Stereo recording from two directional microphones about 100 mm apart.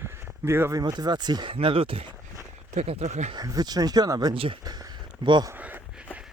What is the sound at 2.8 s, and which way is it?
Speech, 85° right.